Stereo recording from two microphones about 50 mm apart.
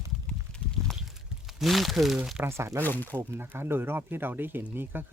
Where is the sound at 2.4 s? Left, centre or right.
Right.